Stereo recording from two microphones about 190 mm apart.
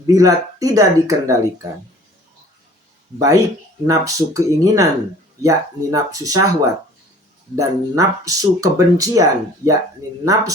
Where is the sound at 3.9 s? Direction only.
15° right (ahead or behind).